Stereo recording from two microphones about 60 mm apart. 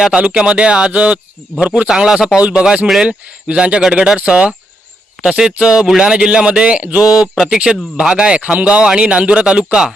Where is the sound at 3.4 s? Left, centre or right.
Centre.